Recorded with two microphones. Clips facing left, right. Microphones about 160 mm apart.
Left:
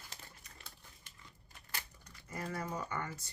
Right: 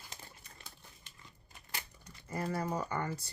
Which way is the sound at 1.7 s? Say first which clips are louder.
Right 2 dB; 20° right (ahead or behind).